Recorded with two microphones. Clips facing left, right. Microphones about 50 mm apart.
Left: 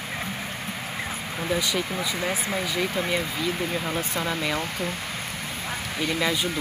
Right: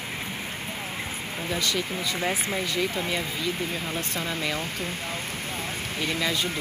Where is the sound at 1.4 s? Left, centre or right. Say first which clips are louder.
Left 2 dB; centre.